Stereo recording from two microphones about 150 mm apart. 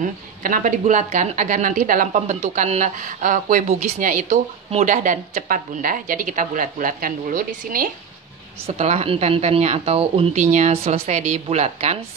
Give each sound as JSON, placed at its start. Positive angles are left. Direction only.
{"t": 0.0, "sound": "a woman's voice", "side_deg": -60}
{"t": 8.6, "sound": "a woman's voice", "side_deg": -45}